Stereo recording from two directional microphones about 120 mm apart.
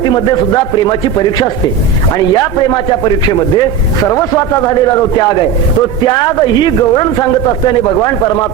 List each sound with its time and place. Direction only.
2.3 s a man's voice: 35° left (ahead or behind)